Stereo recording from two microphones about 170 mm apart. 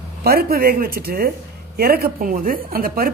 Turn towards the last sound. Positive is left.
turn(degrees=-60)  # may be behind; listen again after turning